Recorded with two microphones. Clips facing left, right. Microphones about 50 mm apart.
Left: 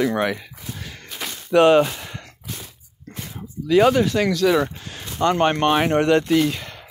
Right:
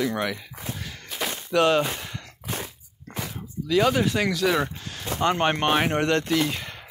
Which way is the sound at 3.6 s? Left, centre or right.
Left.